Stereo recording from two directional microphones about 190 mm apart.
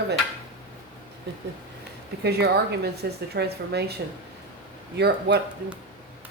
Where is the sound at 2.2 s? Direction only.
60° right (ahead or behind).